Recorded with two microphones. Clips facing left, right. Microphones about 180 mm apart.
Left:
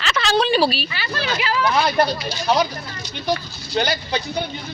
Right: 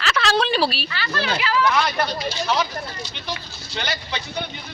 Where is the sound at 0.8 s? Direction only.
15° left (ahead or behind).